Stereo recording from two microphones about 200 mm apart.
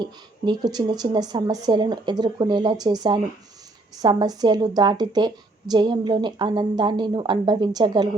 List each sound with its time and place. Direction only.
0.0 s a woman's voice: 20° right (ahead or behind)